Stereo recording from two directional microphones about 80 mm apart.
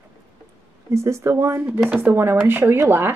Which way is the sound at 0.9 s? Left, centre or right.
Right.